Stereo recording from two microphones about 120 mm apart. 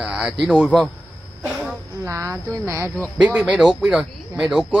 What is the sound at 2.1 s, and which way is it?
Speech, 25° right (ahead or behind).